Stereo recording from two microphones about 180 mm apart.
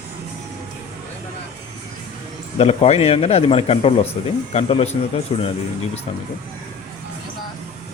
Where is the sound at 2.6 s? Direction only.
35° left (ahead or behind).